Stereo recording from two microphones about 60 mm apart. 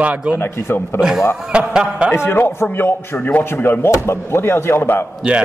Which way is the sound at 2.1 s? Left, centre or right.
Left.